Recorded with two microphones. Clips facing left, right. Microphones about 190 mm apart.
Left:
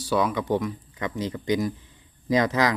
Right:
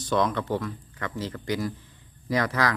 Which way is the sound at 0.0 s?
10° left (ahead or behind).